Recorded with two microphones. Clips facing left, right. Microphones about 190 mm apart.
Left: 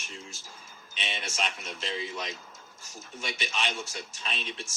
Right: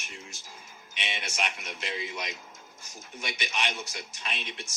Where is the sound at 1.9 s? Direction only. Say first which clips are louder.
Left 1 dB; 30° left (ahead or behind).